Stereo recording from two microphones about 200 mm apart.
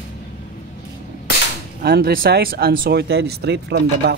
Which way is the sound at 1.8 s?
50° right (ahead or behind).